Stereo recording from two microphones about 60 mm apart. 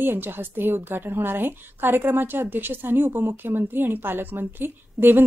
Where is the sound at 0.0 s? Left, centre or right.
Right.